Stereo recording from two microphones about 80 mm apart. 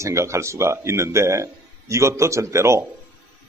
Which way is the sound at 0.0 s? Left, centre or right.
Right.